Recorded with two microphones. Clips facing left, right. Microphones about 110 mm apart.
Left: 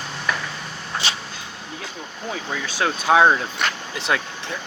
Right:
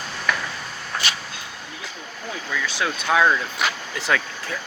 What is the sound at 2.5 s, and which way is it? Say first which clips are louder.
Speech: left 1 dB; 35° left (ahead or behind).